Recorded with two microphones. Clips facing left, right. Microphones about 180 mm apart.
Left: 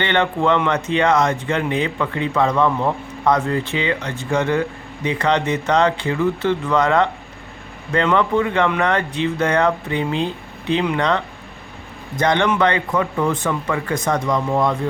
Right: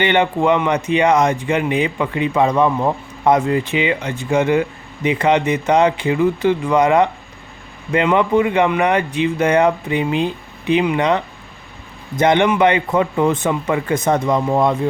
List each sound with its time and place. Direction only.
0.0 s speech: 15° right (ahead or behind)